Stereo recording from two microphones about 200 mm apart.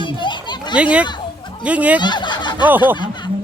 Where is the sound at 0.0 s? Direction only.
25° left (ahead or behind).